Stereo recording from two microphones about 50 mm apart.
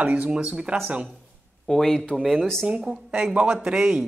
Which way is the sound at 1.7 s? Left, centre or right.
Centre.